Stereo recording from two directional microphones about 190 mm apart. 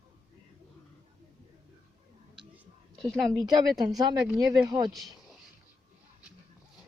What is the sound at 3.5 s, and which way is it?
A woman's voice, 20° right (ahead or behind).